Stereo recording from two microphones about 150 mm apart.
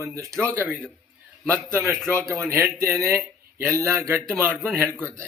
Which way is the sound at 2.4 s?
20° right (ahead or behind).